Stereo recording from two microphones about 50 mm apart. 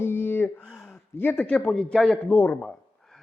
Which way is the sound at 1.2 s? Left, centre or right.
Left.